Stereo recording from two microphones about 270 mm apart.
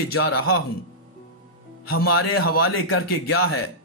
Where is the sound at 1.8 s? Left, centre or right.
Left.